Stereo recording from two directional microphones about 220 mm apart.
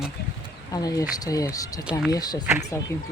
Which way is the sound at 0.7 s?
15° left (ahead or behind).